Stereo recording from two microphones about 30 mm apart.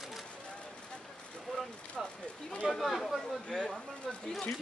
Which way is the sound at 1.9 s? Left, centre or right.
Left.